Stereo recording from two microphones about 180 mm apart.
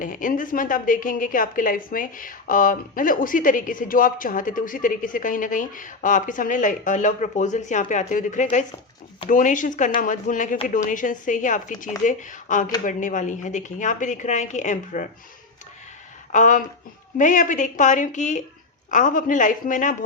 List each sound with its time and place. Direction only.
0.0 s a woman's voice: 50° left (ahead or behind)
16.3 s a woman's voice: 45° left (ahead or behind)